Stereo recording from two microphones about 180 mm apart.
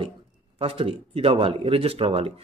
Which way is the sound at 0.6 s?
30° right (ahead or behind).